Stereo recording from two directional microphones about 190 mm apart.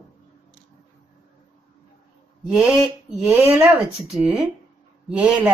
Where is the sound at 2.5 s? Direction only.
5° right (ahead or behind).